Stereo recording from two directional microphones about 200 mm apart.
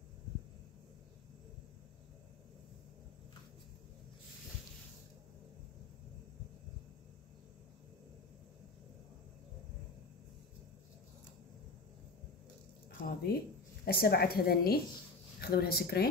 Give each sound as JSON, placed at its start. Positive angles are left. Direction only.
{"t": 13.0, "sound": "a woman's voice", "side_deg": 50}